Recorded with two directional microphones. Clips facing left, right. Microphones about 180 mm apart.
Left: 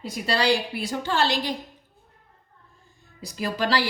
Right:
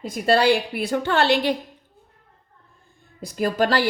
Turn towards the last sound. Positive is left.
turn(degrees=-50)  # may be behind; listen again after turning